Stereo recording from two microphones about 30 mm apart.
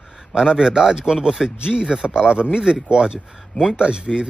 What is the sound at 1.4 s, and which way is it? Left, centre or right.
Speech, centre.